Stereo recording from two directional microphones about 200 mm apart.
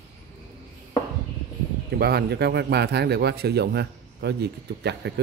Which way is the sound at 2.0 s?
55° right (ahead or behind).